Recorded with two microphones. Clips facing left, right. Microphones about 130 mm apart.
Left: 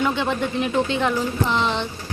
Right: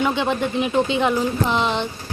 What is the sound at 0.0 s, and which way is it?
Speech, 5° right (ahead or behind).